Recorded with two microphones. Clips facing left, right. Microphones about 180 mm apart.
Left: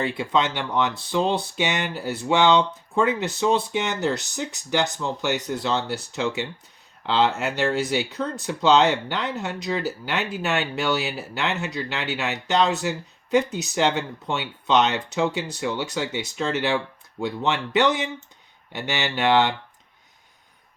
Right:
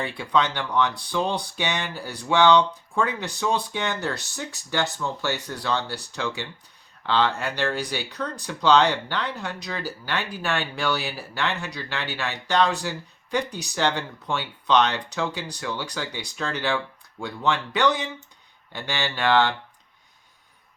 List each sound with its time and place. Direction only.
0.0 s speech: 20° left (ahead or behind)